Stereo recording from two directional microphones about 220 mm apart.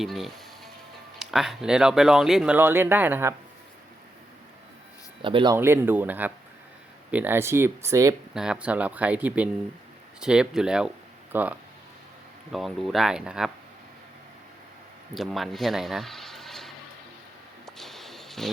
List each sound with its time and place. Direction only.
0.0 s music: centre (ahead or behind)
1.2 s speech: centre (ahead or behind)
5.2 s speech: 20° right (ahead or behind)
5.5 s speech: 10° right (ahead or behind)
15.1 s speech: centre (ahead or behind)
17.7 s a sound: centre (ahead or behind)